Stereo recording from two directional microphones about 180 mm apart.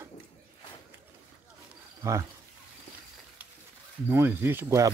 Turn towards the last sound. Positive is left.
turn(degrees=-15)  # may be behind; listen again after turning